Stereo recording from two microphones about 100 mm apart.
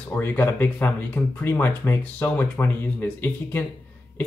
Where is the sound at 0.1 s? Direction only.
20° left (ahead or behind).